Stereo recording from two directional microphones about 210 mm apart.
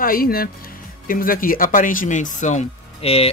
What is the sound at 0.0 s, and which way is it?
Speech, 45° left (ahead or behind).